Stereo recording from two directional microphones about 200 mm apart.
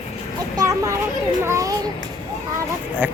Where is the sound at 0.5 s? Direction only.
15° right (ahead or behind).